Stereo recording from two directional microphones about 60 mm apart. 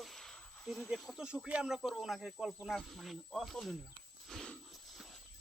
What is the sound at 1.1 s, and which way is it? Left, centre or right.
Speech, centre.